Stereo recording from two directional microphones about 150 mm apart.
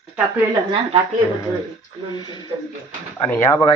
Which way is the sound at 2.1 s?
30° left (ahead or behind).